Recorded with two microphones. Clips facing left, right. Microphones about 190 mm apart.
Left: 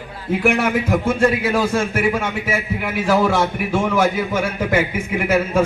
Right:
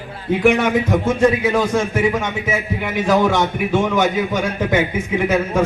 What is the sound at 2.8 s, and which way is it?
A man's voice, 5° left (ahead or behind).